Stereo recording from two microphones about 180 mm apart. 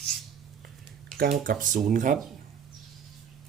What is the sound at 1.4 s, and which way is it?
Speech, 50° right (ahead or behind).